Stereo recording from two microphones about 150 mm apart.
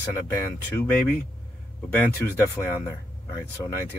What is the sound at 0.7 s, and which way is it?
Speech, 15° left (ahead or behind).